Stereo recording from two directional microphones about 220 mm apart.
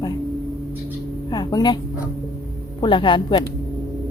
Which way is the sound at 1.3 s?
20° left (ahead or behind).